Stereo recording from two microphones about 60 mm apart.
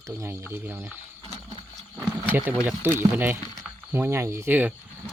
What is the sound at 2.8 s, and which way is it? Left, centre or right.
Speech, right.